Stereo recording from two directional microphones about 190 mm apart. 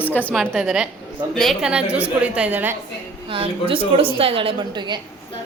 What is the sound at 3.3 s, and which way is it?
A woman's voice, 30° right (ahead or behind).